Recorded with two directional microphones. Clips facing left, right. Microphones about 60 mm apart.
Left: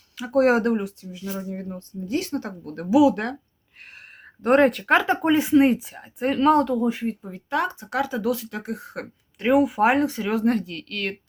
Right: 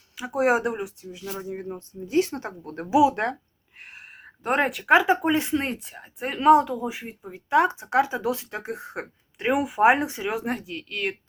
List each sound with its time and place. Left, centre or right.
0.2 s speech: centre
4.4 s speech: centre
7.5 s speech: right